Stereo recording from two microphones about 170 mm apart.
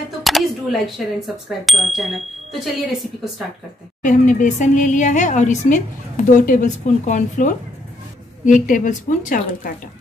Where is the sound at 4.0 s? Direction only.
50° left (ahead or behind).